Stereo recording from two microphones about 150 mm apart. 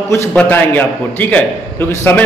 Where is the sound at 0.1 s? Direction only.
20° left (ahead or behind).